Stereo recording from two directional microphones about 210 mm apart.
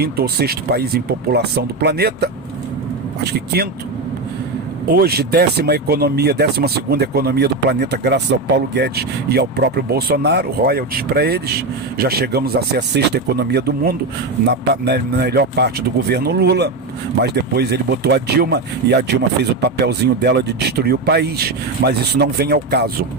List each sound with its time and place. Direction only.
0.0 s speech: 50° right (ahead or behind)
4.9 s speech: 45° right (ahead or behind)